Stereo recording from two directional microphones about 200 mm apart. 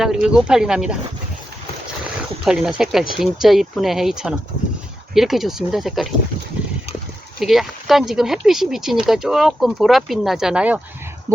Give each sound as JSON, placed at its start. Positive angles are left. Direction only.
{"t": 0.0, "sound": "speech", "side_deg": -5}
{"t": 2.4, "sound": "speech", "side_deg": -5}
{"t": 7.3, "sound": "speech", "side_deg": 0}